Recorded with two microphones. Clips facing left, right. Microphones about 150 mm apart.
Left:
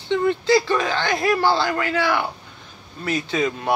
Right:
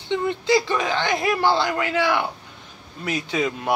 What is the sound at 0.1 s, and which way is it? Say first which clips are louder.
Speech: left 3 dB; 15° right (ahead or behind).